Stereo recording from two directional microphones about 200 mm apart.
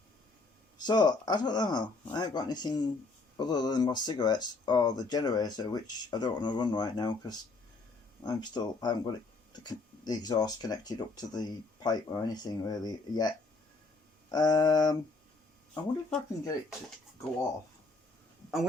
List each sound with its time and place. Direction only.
0.8 s speech: 20° left (ahead or behind)
15.7 s speech: 10° left (ahead or behind)